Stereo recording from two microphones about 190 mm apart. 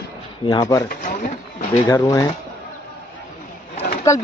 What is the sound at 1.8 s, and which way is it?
Speech, 15° left (ahead or behind).